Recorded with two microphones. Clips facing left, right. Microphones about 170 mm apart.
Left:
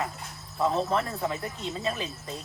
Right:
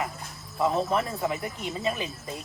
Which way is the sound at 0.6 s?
10° right (ahead or behind).